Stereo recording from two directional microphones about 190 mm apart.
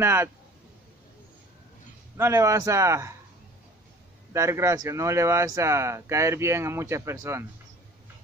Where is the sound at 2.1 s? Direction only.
15° right (ahead or behind).